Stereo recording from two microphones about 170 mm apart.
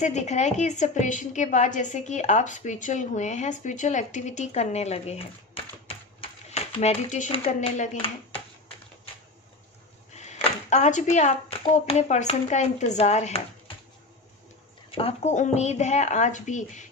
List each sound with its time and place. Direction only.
0.0 s a woman's voice: 40° left (ahead or behind)
10.2 s speech: 40° left (ahead or behind)
14.8 s a woman's voice: 35° left (ahead or behind)